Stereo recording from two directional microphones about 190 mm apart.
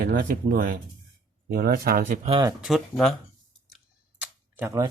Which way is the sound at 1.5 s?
55° right (ahead or behind).